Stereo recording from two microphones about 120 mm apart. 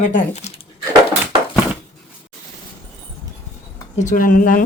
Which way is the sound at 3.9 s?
90° left.